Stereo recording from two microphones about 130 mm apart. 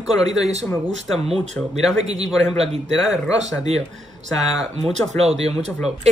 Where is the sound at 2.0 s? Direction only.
55° right (ahead or behind).